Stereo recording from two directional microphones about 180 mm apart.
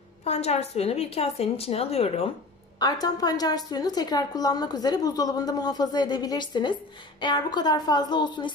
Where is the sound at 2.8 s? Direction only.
20° left (ahead or behind).